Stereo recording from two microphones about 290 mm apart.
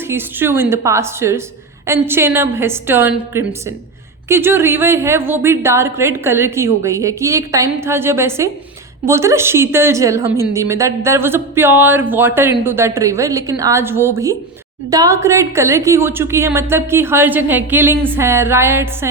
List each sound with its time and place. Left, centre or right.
0.1 s a woman's voice: centre